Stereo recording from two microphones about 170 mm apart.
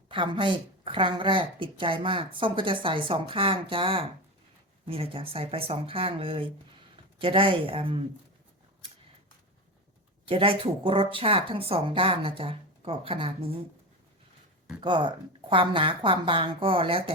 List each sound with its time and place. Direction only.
0.1 s speech: 30° right (ahead or behind)
10.2 s speech: 30° right (ahead or behind)
14.8 s speech: 30° right (ahead or behind)